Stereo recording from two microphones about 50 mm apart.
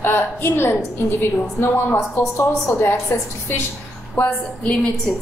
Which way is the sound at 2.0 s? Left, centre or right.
Left.